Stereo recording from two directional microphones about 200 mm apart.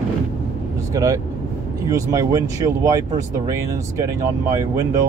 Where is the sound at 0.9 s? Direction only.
15° right (ahead or behind).